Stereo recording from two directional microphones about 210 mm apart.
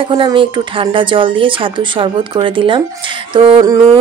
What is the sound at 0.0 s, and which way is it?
Speech, 20° right (ahead or behind).